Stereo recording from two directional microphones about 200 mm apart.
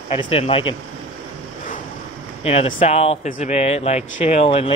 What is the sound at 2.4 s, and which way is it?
Speech, 30° left (ahead or behind).